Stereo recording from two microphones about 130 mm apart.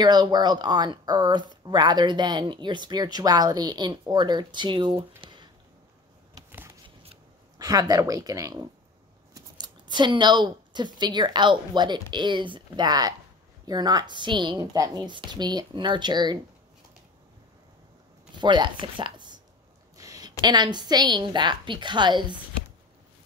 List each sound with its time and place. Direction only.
0.0 s speech: 35° right (ahead or behind)
6.5 s shuffling cards: 20° right (ahead or behind)
7.5 s speech: 30° right (ahead or behind)
18.4 s speech: 35° right (ahead or behind)